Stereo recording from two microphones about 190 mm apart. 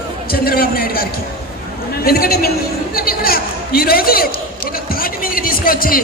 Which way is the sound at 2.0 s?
55° left (ahead or behind).